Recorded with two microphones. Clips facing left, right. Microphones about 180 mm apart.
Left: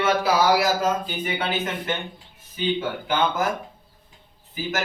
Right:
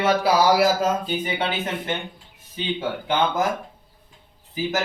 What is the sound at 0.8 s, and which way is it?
Speech, 30° right (ahead or behind).